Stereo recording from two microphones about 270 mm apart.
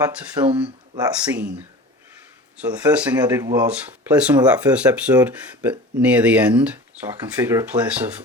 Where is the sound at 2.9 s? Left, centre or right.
Centre.